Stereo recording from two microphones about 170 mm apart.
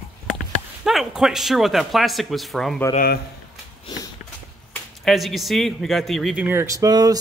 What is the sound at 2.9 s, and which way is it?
Speech, 65° left (ahead or behind).